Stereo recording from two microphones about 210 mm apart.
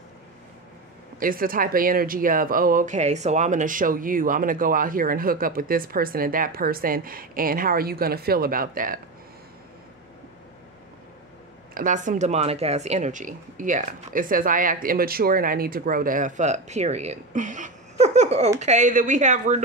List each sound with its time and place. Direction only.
1.2 s speech: 40° right (ahead or behind)
11.7 s speech: 35° right (ahead or behind)